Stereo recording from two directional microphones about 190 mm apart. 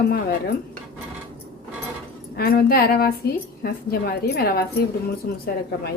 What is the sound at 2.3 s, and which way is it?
A woman's voice, 55° left (ahead or behind).